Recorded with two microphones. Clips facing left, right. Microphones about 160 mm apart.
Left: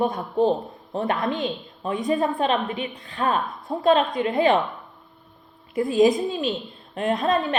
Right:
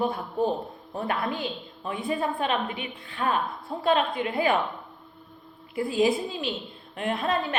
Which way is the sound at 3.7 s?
35° left (ahead or behind).